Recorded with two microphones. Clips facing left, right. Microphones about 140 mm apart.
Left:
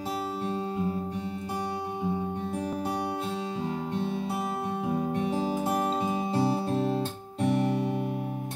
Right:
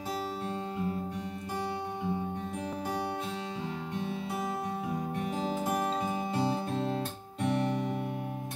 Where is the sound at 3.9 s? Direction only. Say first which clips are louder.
Left 2 dB; 30° left (ahead or behind).